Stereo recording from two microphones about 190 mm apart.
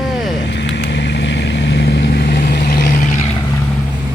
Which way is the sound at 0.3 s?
65° left (ahead or behind).